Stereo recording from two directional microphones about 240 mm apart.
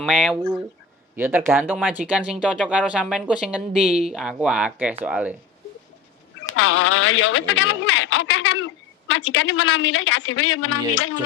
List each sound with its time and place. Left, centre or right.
0.0 s speech: centre
6.6 s speech: left